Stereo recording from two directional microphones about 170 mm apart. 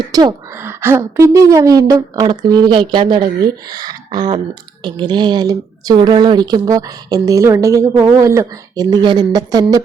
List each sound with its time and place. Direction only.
0.1 s a woman's voice: 25° right (ahead or behind)